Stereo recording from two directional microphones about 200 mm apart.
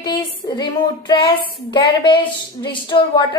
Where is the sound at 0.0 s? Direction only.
20° left (ahead or behind).